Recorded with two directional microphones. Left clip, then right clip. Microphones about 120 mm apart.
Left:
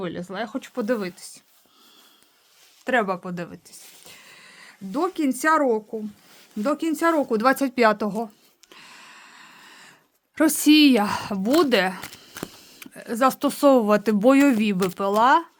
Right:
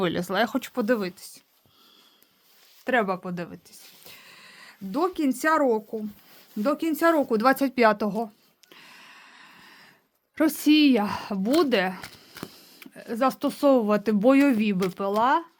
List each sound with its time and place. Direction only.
0.0 s speech: 65° right (ahead or behind)
0.6 s speech: 25° right (ahead or behind)
0.9 s speech: 10° right (ahead or behind)
2.8 s speech: centre (ahead or behind)
8.7 s a sound: 5° left (ahead or behind)
10.3 s speech: 15° left (ahead or behind)